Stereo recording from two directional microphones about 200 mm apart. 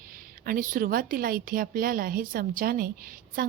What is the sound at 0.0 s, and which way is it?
A woman's voice, 45° right (ahead or behind).